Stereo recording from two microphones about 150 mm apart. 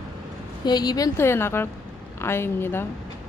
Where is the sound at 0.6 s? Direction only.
25° left (ahead or behind).